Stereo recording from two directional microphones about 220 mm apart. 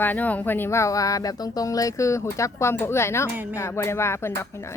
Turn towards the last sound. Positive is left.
turn(degrees=10)  # may be behind; listen again after turning